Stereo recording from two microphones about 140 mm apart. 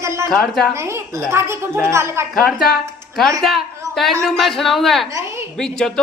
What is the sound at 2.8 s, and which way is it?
Speech, centre (ahead or behind).